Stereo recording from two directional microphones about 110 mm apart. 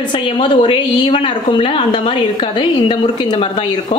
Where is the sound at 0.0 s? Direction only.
50° left (ahead or behind).